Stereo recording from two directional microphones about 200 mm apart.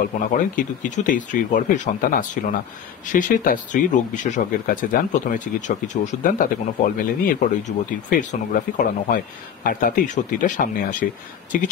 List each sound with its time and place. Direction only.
0.2 s speech: 40° left (ahead or behind)